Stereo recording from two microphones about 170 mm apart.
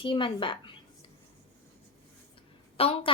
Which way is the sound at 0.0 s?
30° left (ahead or behind).